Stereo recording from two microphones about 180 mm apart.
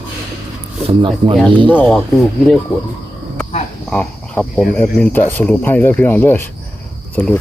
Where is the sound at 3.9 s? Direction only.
5° left (ahead or behind).